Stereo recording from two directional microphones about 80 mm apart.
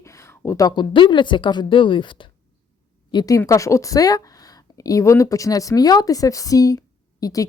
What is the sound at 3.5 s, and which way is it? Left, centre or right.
A woman's voice, left.